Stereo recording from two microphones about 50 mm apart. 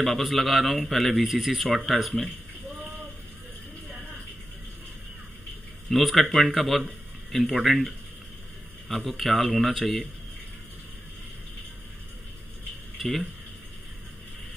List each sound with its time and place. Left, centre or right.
0.0 s a man's voice: centre
2.8 s a sound: right
5.9 s a man's voice: centre
13.0 s a man's voice: centre